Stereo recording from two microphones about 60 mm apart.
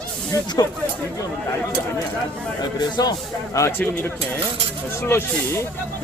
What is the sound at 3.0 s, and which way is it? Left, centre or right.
Speech, left.